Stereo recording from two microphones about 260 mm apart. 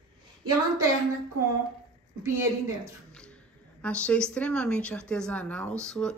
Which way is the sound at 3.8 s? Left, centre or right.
Centre.